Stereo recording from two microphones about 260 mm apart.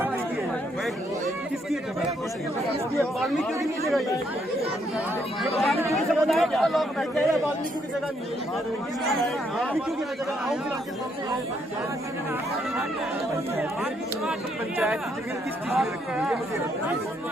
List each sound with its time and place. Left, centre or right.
3.0 s speech: centre
5.4 s speech: centre
15.7 s speech: centre